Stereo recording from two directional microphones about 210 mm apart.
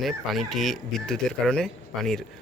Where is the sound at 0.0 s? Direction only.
Centre (ahead or behind).